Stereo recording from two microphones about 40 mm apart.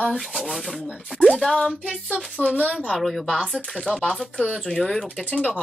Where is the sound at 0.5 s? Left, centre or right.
Centre.